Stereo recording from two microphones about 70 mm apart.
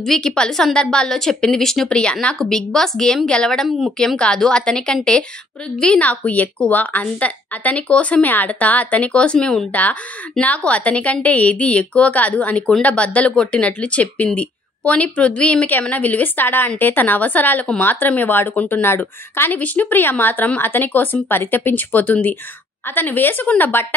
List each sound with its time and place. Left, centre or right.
0.0 s a woman's voice: centre
9.7 s a woman's voice: left